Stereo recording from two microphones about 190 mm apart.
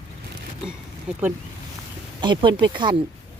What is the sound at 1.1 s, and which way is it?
Speech, 5° right (ahead or behind).